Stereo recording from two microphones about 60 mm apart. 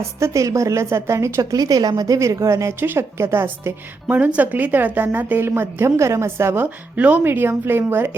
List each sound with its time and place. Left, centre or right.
0.2 s a woman's voice: right
2.8 s a woman's voice: right
4.1 s a woman's voice: right
6.0 s a woman's voice: right
6.9 s speech: right
7.3 s a woman's voice: right